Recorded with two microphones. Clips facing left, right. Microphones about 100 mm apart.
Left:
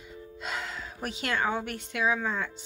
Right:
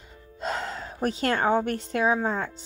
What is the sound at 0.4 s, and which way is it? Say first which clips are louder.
A woman's voice: right 6 dB; 40° right (ahead or behind).